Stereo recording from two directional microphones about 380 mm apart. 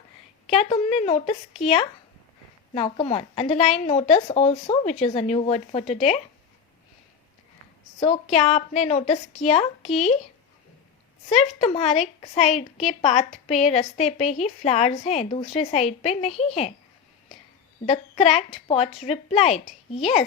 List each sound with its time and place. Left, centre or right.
0.5 s a woman's voice: centre
7.9 s a woman's voice: centre
11.3 s a woman's voice: centre
17.8 s a woman's voice: centre